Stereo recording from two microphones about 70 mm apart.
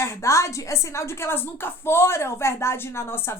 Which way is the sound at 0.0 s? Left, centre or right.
Left.